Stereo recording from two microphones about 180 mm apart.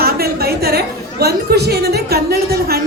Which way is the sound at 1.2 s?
65° right (ahead or behind).